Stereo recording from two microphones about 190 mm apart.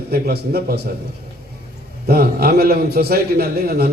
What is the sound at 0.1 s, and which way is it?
Speech, 55° right (ahead or behind).